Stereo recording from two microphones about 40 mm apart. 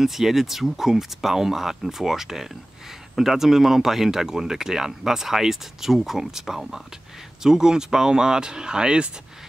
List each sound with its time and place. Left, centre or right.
0.0 s speech: centre